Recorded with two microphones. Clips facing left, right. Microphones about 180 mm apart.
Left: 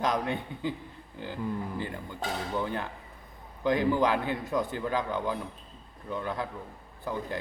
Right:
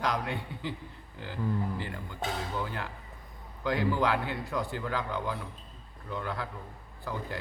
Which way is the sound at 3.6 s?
20° left (ahead or behind).